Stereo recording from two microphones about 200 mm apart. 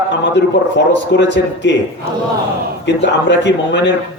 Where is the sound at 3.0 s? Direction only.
60° left (ahead or behind).